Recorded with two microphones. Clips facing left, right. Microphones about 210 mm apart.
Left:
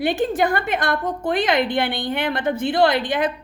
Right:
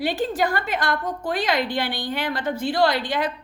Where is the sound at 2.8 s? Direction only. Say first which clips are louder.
Left 3 dB; 50° left (ahead or behind).